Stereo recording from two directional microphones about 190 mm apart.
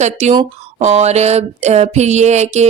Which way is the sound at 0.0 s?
35° right (ahead or behind).